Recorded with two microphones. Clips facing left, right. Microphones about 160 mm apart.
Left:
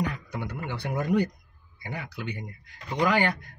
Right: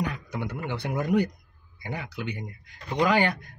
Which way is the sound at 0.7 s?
15° right (ahead or behind).